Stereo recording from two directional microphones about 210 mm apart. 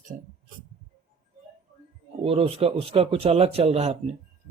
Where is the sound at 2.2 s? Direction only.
30° right (ahead or behind).